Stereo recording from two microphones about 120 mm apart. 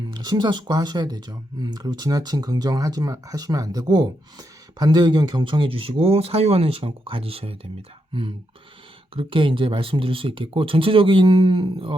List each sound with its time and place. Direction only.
0.1 s speech: 35° right (ahead or behind)